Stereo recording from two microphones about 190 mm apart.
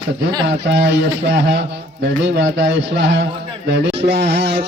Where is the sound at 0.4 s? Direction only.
65° right (ahead or behind).